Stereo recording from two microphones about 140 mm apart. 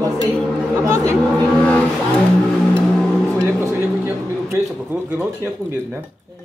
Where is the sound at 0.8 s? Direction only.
20° right (ahead or behind).